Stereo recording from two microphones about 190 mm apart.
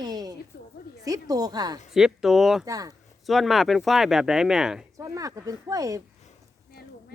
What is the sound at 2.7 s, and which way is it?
Speech, 20° right (ahead or behind).